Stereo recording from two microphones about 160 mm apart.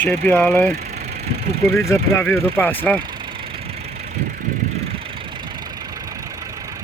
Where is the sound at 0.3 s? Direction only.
10° left (ahead or behind).